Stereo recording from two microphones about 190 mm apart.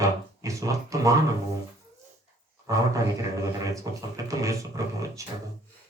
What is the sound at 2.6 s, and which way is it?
Speech, 15° right (ahead or behind).